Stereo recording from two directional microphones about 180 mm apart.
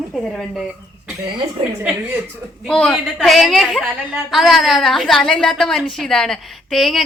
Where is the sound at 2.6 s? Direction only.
5° left (ahead or behind).